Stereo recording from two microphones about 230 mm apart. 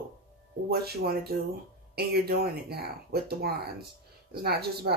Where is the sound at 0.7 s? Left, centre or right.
Right.